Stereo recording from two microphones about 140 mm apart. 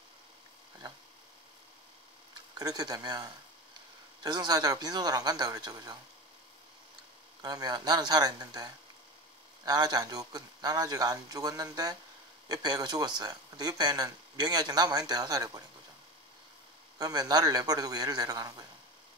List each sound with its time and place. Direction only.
2.5 s speech: 30° right (ahead or behind)
7.4 s speech: 30° right (ahead or behind)
9.7 s speech: 30° right (ahead or behind)
17.0 s speech: 30° right (ahead or behind)